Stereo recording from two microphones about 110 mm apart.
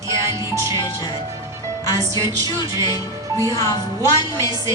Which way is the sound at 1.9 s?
30° right (ahead or behind).